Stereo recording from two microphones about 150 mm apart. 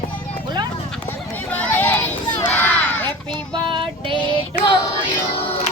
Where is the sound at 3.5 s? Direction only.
30° right (ahead or behind).